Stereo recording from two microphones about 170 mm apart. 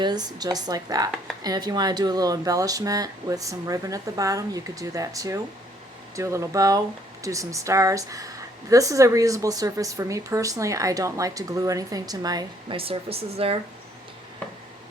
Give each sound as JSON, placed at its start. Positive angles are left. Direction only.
{"t": 0.0, "sound": "a woman's voice", "side_deg": -25}